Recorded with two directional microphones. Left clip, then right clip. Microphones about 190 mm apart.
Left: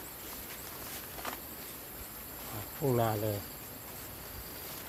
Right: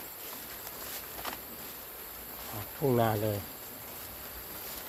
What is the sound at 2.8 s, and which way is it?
Speech, 20° right (ahead or behind).